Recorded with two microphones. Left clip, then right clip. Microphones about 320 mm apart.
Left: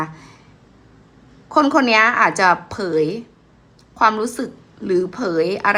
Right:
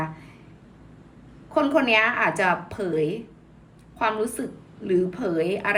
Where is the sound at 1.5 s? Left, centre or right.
Centre.